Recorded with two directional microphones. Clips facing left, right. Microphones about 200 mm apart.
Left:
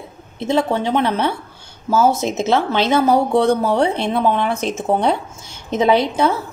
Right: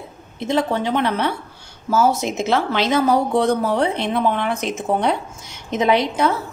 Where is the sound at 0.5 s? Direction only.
30° left (ahead or behind).